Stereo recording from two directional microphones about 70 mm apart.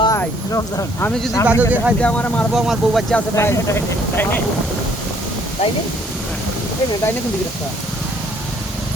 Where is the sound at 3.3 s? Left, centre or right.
Left.